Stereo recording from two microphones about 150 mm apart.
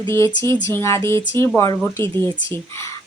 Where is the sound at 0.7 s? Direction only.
20° left (ahead or behind).